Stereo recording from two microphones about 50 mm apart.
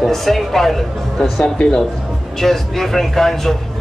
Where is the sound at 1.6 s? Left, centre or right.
Centre.